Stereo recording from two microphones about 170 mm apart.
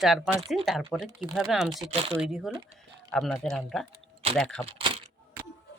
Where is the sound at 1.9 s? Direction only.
35° right (ahead or behind).